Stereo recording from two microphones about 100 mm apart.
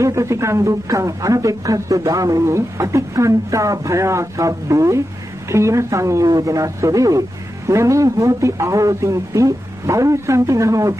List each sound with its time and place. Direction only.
0.0 s speech: 30° right (ahead or behind)